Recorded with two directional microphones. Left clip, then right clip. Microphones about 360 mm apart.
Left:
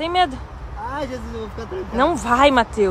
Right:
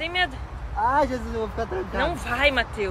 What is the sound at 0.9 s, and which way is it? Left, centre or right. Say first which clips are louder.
Speech: right 6 dB; centre.